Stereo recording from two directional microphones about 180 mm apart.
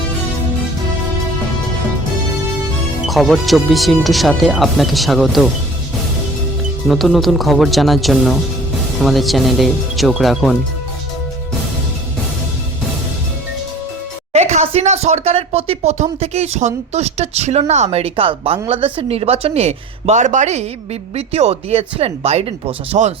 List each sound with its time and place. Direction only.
3.1 s speech: centre (ahead or behind)
6.8 s speech: centre (ahead or behind)
14.3 s speech: 40° right (ahead or behind)